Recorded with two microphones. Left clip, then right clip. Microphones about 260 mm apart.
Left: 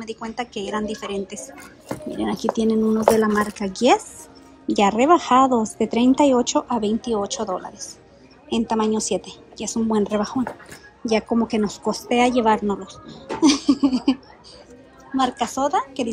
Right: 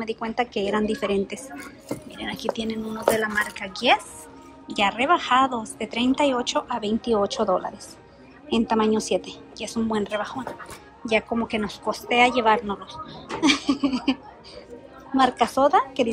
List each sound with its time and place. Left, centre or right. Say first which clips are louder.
0.0 s a woman's voice: right 3 dB; centre
15.1 s a woman's voice: right 2 dB; centre